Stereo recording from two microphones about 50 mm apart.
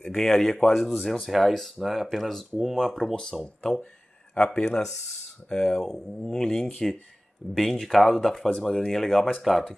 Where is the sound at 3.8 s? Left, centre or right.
Left.